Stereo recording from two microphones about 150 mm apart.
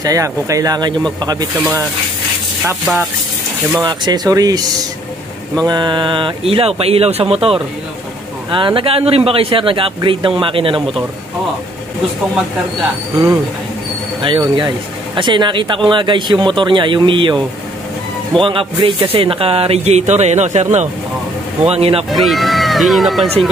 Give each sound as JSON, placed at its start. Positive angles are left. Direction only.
{"t": 0.0, "sound": "speech", "side_deg": -20}
{"t": 1.6, "sound": "speech", "side_deg": -15}
{"t": 2.6, "sound": "speech", "side_deg": 0}
{"t": 3.7, "sound": "speech", "side_deg": -25}
{"t": 5.7, "sound": "a man's voice", "side_deg": -30}
{"t": 14.2, "sound": "a man's voice", "side_deg": -35}
{"t": 18.4, "sound": "a man's voice", "side_deg": -35}
{"t": 22.1, "sound": "speech", "side_deg": 0}